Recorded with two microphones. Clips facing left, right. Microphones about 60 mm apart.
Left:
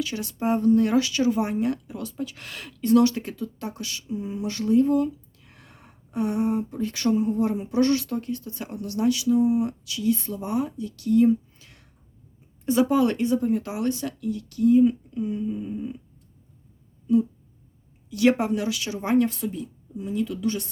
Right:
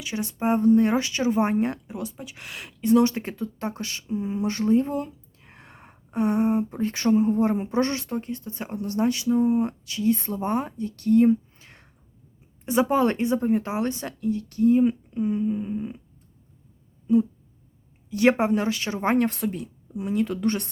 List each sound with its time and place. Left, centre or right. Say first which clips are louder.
0.0 s speech: even; right
12.6 s speech: left 1 dB; right
12.9 s speech: even; right
18.1 s speech: right 1 dB; right